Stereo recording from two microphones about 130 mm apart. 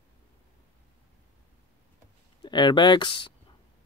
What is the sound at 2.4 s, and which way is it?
Speech, 35° left (ahead or behind).